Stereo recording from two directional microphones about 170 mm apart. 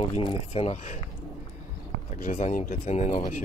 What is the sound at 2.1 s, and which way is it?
Speech, 50° left (ahead or behind).